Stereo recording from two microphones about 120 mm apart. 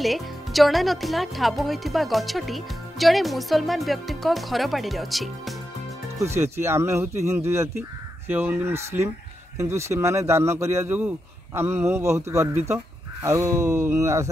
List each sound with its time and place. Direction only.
0.0 s speech: centre (ahead or behind)
6.1 s speech: 20° right (ahead or behind)